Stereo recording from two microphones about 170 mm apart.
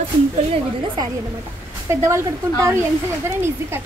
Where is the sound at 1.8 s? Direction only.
15° right (ahead or behind).